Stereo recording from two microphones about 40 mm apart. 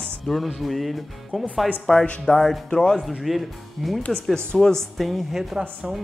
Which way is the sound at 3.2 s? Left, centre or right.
Centre.